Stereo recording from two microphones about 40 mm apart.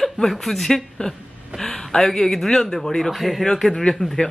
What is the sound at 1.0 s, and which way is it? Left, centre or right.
Speech, left.